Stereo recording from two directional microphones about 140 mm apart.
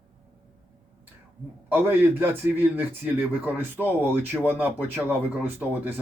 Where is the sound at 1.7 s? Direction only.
15° right (ahead or behind).